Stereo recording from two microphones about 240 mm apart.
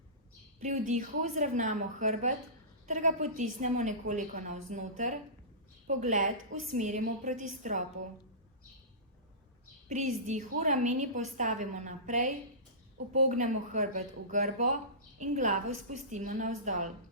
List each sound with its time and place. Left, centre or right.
0.6 s a woman's voice: right
9.9 s a woman's voice: right